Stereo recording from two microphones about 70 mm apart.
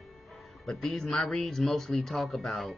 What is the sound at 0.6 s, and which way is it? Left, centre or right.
Speech, centre.